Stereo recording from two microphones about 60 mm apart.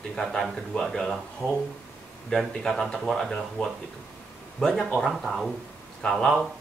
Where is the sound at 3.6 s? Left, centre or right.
Left.